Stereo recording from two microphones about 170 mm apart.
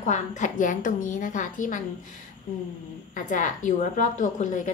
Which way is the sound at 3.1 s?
45° left (ahead or behind).